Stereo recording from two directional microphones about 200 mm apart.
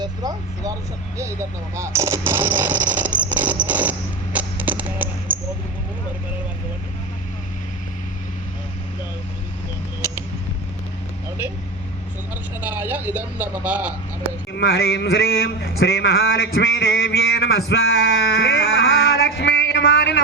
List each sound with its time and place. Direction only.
0.0 s speech: 20° right (ahead or behind)
2.9 s music: 10° right (ahead or behind)
12.6 s vehicle: 10° right (ahead or behind)
14.5 s a man's voice: 55° left (ahead or behind)
18.3 s a sound: 55° left (ahead or behind)